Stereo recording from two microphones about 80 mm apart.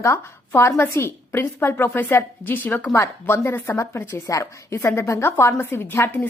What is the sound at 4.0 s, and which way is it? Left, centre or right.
A woman's voice, left.